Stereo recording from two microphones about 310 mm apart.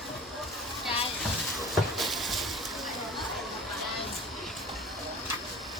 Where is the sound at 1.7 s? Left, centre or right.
Centre.